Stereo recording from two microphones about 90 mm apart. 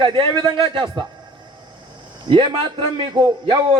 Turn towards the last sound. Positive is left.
turn(degrees=-65)  # may be behind; listen again after turning